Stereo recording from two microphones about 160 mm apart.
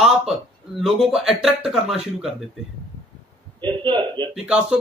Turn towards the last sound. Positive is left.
turn(degrees=-5)  # may be behind; listen again after turning